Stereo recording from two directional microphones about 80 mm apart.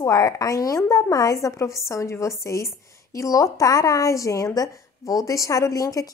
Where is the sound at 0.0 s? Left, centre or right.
Left.